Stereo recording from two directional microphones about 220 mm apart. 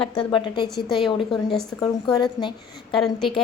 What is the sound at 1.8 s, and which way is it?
Speech, 20° left (ahead or behind).